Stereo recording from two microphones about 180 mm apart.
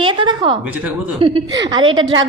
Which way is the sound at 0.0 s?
25° right (ahead or behind).